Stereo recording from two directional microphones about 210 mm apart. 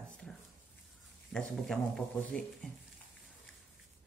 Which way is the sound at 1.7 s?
Centre (ahead or behind).